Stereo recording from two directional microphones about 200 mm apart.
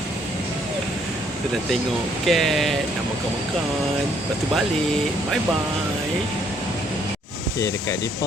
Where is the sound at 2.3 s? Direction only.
Centre (ahead or behind).